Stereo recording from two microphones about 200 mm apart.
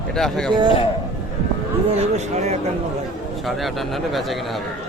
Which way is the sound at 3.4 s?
Centre (ahead or behind).